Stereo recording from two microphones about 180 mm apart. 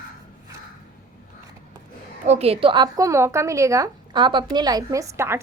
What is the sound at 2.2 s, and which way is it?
A woman's voice, 35° right (ahead or behind).